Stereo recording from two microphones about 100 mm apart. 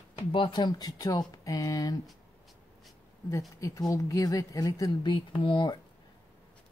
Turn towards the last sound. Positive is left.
turn(degrees=55)  # may be behind; listen again after turning